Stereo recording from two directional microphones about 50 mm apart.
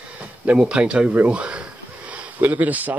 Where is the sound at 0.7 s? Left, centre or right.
Right.